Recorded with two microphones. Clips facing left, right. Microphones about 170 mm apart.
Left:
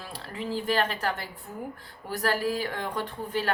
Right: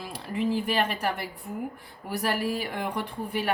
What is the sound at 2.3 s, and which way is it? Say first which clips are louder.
A woman's voice: left 2 dB; 15° right (ahead or behind).